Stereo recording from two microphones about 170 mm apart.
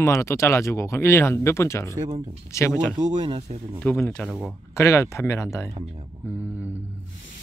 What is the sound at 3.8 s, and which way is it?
Speech, 10° left (ahead or behind).